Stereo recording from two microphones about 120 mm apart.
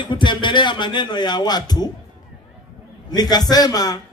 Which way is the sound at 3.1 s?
35° left (ahead or behind).